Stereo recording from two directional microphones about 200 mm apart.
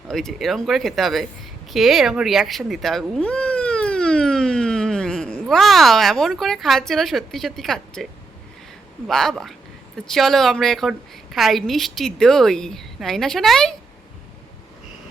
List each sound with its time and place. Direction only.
0.1 s a woman's voice: centre (ahead or behind)
9.0 s a woman's voice: centre (ahead or behind)